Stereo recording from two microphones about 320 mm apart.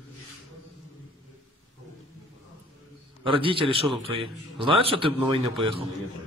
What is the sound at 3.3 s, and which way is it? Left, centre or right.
A man's voice, centre.